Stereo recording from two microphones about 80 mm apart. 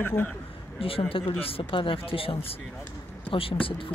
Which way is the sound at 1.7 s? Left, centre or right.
Left.